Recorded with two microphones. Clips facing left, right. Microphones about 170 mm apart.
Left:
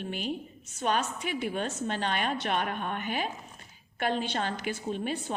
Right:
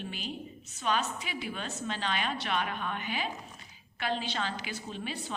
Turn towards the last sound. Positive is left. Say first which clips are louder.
# left 6 dB
turn(degrees=50)  # may be behind; listen again after turning